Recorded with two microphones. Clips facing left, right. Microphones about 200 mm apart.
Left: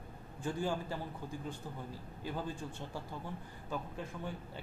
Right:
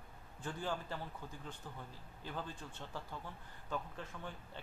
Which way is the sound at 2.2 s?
10° left (ahead or behind).